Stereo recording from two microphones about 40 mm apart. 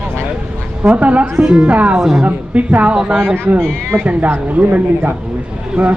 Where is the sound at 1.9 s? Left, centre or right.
Centre.